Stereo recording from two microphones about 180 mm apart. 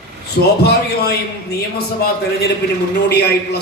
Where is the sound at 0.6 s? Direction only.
65° left (ahead or behind).